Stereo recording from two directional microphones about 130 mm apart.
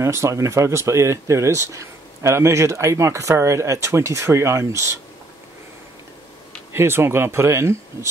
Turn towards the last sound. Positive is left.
turn(degrees=-20)  # may be behind; listen again after turning